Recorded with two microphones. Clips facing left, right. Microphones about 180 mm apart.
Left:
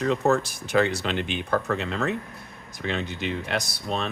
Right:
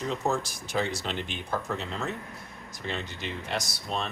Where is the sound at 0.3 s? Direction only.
65° left (ahead or behind).